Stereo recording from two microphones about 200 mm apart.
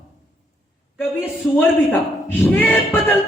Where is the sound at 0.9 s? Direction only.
10° left (ahead or behind).